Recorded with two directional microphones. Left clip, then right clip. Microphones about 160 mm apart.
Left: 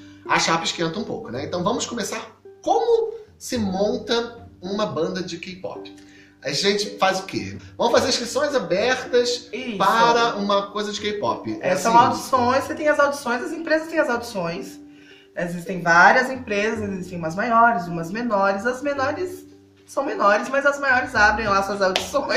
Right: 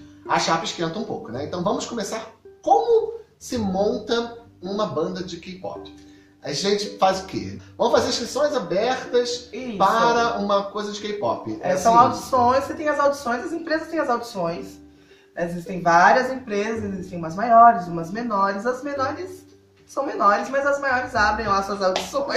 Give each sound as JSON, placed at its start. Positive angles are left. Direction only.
{"t": 0.3, "sound": "a man's voice", "side_deg": 0}
{"t": 3.4, "sound": "a man's voice", "side_deg": 0}
{"t": 6.4, "sound": "a man's voice", "side_deg": 0}
{"t": 11.8, "sound": "a woman's voice", "side_deg": 15}